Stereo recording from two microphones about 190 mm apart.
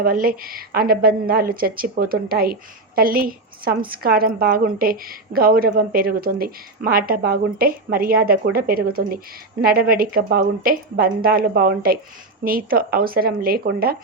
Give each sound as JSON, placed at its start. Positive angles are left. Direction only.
{"t": 0.0, "sound": "speech", "side_deg": -50}